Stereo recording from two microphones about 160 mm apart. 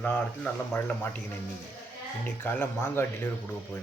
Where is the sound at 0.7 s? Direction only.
10° left (ahead or behind).